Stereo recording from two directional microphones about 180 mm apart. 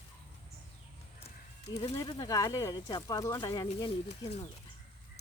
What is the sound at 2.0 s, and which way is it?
Speech, 20° left (ahead or behind).